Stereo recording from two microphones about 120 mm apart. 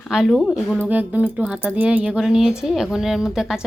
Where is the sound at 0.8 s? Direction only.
15° right (ahead or behind).